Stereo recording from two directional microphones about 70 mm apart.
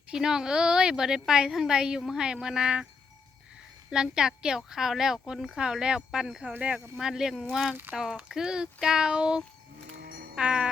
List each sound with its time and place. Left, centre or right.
0.1 s speech: centre
3.8 s speech: centre
7.0 s speech: centre